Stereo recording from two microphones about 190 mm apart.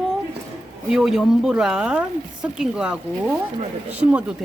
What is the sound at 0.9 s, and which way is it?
Speech, centre (ahead or behind).